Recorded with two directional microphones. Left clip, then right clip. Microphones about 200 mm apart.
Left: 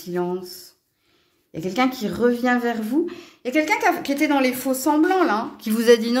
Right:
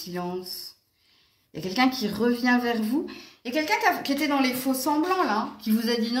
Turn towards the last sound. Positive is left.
turn(degrees=65)  # may be behind; listen again after turning